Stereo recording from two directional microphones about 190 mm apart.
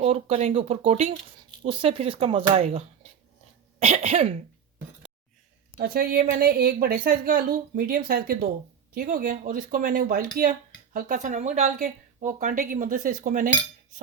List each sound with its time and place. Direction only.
0.0 s speech: 35° right (ahead or behind)
5.8 s speech: 50° right (ahead or behind)